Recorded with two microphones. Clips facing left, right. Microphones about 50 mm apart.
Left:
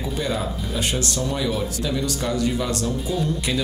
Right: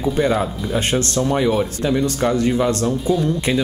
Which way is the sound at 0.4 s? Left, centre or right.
Right.